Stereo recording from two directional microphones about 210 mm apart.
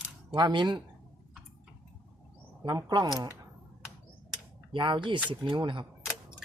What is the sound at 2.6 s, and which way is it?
Speech, 20° right (ahead or behind).